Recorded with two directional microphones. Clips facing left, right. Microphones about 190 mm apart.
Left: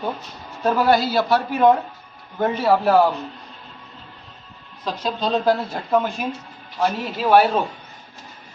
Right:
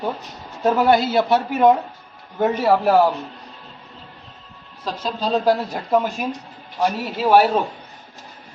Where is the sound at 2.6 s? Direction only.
10° right (ahead or behind).